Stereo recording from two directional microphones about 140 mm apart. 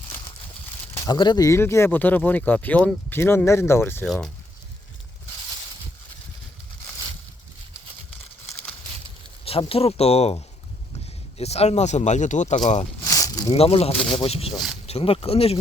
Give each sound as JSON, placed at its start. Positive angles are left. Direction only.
{"t": 0.9, "sound": "speech", "side_deg": 30}
{"t": 4.0, "sound": "speech", "side_deg": 0}
{"t": 9.4, "sound": "speech", "side_deg": 40}
{"t": 13.1, "sound": "a sound", "side_deg": 25}
{"t": 13.5, "sound": "speech", "side_deg": 45}